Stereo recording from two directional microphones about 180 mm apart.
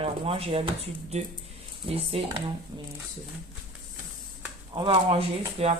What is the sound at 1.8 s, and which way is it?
Speech, 30° right (ahead or behind).